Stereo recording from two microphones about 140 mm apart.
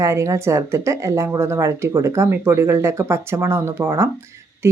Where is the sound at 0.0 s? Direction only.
20° right (ahead or behind).